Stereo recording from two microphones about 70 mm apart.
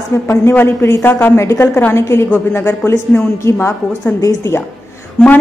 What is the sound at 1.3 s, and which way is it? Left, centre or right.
A woman's voice, left.